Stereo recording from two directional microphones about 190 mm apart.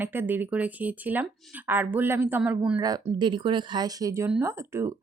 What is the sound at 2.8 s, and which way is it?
Speech, 20° right (ahead or behind).